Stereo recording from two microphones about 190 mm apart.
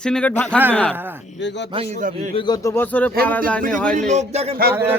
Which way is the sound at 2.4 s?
20° left (ahead or behind).